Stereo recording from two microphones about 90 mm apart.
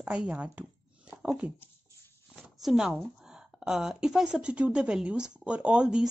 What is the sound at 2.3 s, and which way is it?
Speech, 5° right (ahead or behind).